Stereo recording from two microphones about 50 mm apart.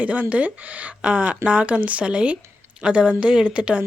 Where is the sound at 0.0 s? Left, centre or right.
Right.